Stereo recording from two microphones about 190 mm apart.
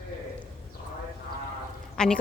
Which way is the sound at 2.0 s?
5° left (ahead or behind).